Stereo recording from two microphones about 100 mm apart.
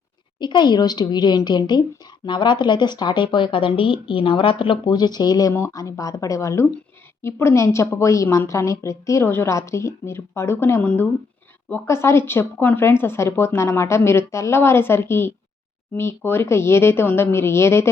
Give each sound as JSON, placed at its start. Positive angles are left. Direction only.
{"t": 0.3, "sound": "a woman's voice", "side_deg": 50}